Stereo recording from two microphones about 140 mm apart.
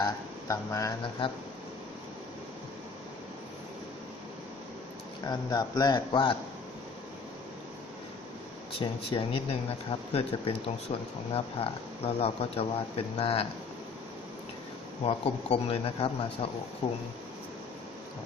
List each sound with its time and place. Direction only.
0.0 s a sound: 20° left (ahead or behind)
5.2 s speech: 25° left (ahead or behind)
8.8 s speech: 40° left (ahead or behind)
15.0 s speech: 45° left (ahead or behind)